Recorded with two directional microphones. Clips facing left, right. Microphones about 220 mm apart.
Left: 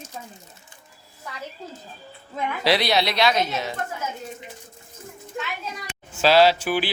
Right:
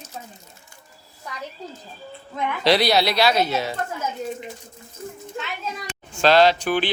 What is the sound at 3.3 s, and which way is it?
Speech, 35° right (ahead or behind).